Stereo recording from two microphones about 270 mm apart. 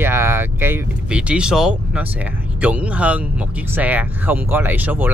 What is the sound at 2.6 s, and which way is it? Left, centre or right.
Speech, centre.